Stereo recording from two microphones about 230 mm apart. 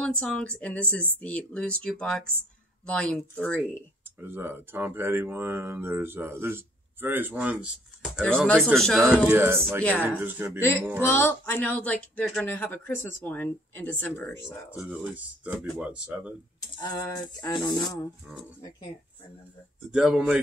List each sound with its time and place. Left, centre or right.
0.2 s speech: centre
4.2 s speech: centre
9.0 s speech: centre
11.0 s speech: centre
14.8 s speech: centre
16.5 s speech: centre
18.3 s speech: centre
19.9 s speech: centre